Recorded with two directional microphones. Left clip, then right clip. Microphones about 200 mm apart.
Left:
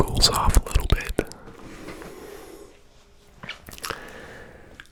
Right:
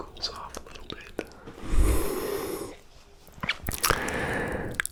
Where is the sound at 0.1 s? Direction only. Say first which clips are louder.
Left 14 dB; 55° left (ahead or behind); by 1.4 s 40° left (ahead or behind).